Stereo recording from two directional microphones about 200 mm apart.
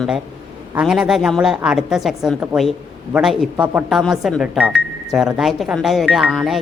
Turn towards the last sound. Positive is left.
turn(degrees=0)  # may be behind; listen again after turning